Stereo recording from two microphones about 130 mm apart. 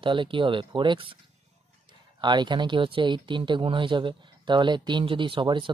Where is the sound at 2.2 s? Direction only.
35° right (ahead or behind).